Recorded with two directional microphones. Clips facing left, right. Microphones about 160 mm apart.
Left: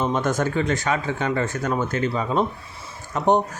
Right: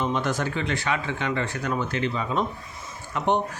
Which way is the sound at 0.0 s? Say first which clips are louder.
Left 4 dB; 45° left (ahead or behind).